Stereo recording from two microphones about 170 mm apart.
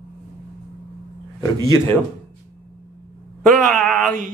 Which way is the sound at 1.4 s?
20° left (ahead or behind).